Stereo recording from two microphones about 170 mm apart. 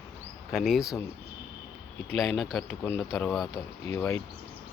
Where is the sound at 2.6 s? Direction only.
15° left (ahead or behind).